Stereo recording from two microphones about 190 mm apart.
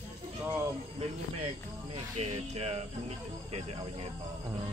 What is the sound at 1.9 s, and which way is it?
Speech, 35° right (ahead or behind).